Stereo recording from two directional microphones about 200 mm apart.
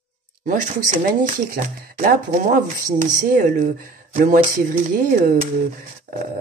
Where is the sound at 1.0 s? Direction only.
45° right (ahead or behind).